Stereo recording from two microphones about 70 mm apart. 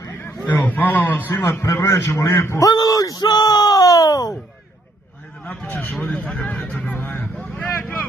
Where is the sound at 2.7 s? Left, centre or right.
Left.